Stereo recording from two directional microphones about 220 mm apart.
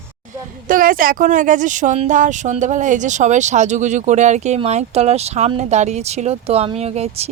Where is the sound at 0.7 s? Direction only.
40° right (ahead or behind).